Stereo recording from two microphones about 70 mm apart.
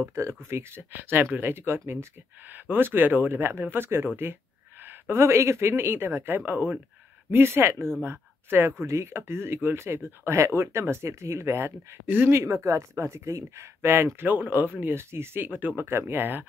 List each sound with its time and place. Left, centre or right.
0.1 s speech: right
8.8 s speech: right
12.4 s speech: right
13.9 s speech: right